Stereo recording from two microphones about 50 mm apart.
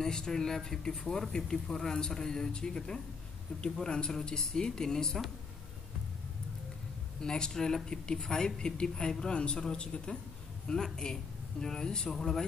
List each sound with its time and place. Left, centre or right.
0.0 s speech: centre
7.2 s speech: centre